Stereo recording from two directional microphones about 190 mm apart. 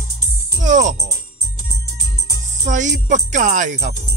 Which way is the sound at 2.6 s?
40° right (ahead or behind).